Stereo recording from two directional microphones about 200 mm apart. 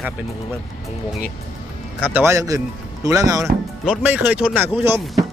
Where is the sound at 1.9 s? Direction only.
10° right (ahead or behind).